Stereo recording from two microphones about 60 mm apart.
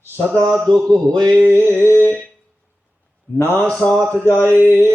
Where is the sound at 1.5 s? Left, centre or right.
Left.